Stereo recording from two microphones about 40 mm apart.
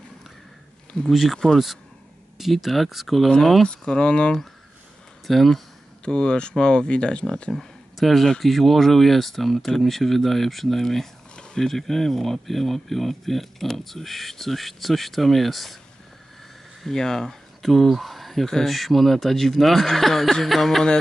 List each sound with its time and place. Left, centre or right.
1.1 s speech: centre
3.6 s speech: left
5.2 s speech: centre
6.0 s speech: left
7.5 s speech: centre
16.8 s speech: centre
17.6 s speech: centre